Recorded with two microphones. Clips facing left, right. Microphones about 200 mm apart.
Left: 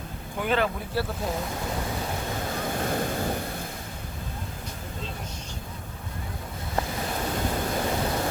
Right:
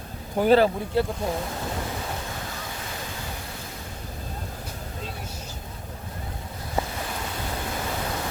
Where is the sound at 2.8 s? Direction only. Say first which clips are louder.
Left 9 dB; 50° left (ahead or behind).